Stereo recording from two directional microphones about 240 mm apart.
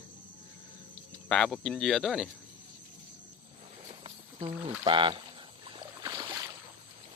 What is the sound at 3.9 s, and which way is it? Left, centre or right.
Rowboat, right.